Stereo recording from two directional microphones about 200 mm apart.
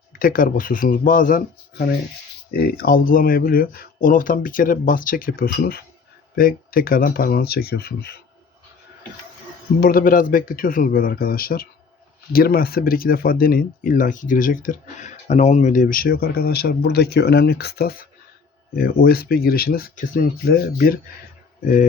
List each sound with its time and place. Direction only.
0.2 s speech: 45° left (ahead or behind)
2.5 s speech: 50° left (ahead or behind)
9.8 s speech: 45° left (ahead or behind)